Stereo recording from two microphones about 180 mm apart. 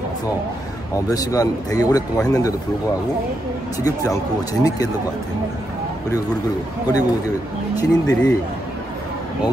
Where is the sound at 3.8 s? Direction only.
20° left (ahead or behind).